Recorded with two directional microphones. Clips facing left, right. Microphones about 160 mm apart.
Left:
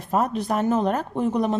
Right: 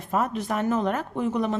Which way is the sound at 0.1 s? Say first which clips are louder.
Left 3 dB; 35° left (ahead or behind).